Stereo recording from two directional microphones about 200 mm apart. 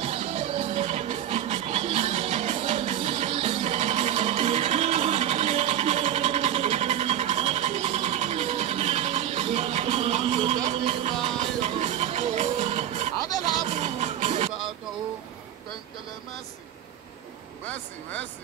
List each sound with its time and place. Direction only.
0.0 s music: 30° right (ahead or behind)
17.6 s vehicle: 10° left (ahead or behind)